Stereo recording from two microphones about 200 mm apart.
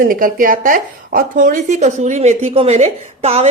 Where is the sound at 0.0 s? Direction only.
45° right (ahead or behind).